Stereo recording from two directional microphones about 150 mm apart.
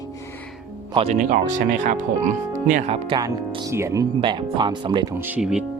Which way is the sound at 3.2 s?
25° right (ahead or behind).